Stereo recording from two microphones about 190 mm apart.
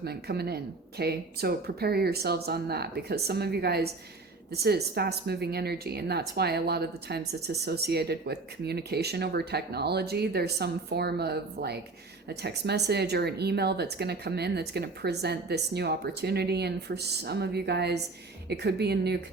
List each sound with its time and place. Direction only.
0.0 s a woman's voice: 55° right (ahead or behind)